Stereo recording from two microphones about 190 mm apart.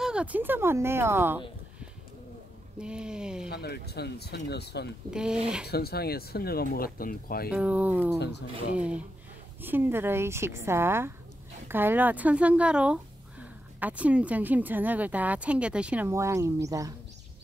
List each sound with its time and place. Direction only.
0.0 s speech: 5° right (ahead or behind)
2.8 s speech: 5° right (ahead or behind)
3.4 s speech: 55° left (ahead or behind)
5.1 s speech: 5° right (ahead or behind)
5.7 s speech: 55° left (ahead or behind)
7.5 s speech: 10° right (ahead or behind)
8.2 s speech: 60° left (ahead or behind)
8.7 s speech: 5° right (ahead or behind)